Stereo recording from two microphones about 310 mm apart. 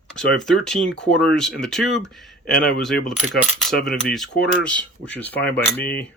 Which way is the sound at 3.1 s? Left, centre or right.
Centre.